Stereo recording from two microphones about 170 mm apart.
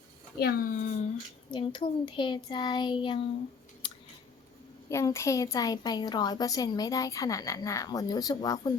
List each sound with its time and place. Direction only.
0.3 s a child's voice: 65° left (ahead or behind)
1.5 s a woman's voice: 30° left (ahead or behind)
4.9 s a woman's voice: 15° left (ahead or behind)